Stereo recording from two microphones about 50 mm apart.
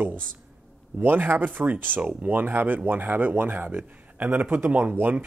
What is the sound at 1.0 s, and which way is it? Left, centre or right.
Speech, right.